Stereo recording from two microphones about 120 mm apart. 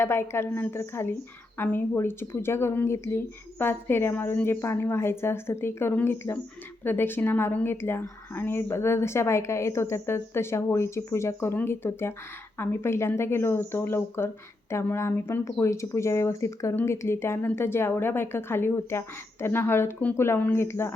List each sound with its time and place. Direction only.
0.0 s speech: 20° left (ahead or behind)